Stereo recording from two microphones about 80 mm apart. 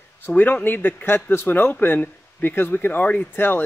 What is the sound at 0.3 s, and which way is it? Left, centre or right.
Speech, centre.